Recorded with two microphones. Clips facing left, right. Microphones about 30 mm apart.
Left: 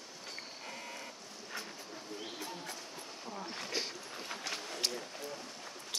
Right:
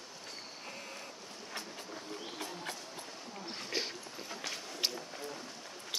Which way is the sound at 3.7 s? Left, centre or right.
Centre.